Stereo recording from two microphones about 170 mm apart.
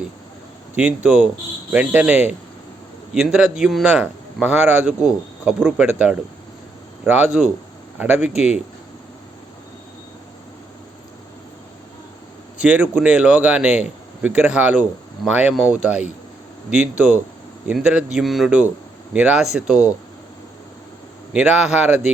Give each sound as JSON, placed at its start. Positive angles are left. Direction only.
{"t": 0.8, "sound": "speech", "side_deg": -5}
{"t": 12.5, "sound": "speech", "side_deg": -10}
{"t": 21.3, "sound": "speech", "side_deg": -5}